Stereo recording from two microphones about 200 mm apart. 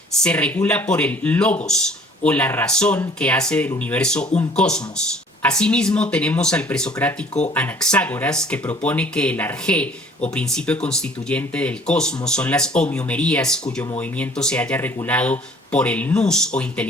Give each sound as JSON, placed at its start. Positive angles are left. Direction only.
{"t": 0.2, "sound": "speech", "side_deg": 5}